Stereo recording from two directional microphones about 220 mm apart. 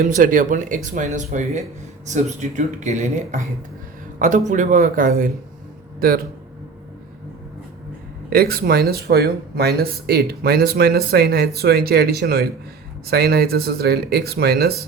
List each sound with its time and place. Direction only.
0.0 s a man's voice: 35° right (ahead or behind)
8.3 s speech: 45° right (ahead or behind)